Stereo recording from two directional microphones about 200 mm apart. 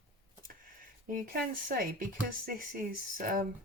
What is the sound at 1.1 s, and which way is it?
Speech, 45° right (ahead or behind).